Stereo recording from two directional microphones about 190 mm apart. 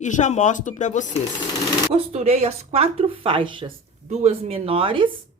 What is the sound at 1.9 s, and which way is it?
A woman's voice, 30° right (ahead or behind).